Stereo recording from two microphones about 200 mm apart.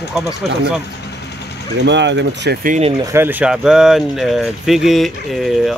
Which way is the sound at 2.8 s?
25° right (ahead or behind).